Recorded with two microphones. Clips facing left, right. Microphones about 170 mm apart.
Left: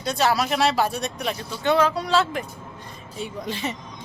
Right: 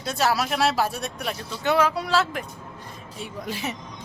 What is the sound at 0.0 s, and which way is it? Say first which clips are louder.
Speech: left 2 dB; centre (ahead or behind).